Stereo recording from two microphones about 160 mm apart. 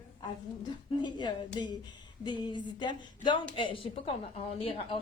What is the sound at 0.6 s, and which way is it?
Speech, 30° left (ahead or behind).